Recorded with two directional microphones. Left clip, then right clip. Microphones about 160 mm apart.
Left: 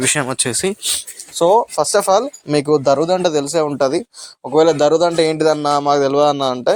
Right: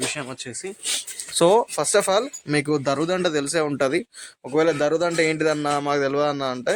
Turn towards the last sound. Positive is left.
turn(degrees=25)  # may be behind; listen again after turning